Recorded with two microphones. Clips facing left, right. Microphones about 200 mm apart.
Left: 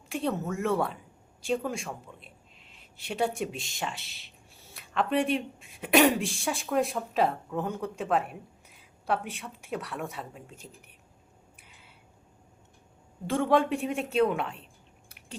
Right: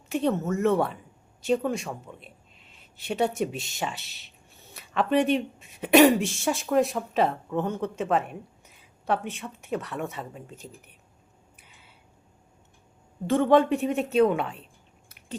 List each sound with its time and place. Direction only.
0.1 s speech: centre (ahead or behind)
11.6 s a sound: centre (ahead or behind)
13.2 s speech: centre (ahead or behind)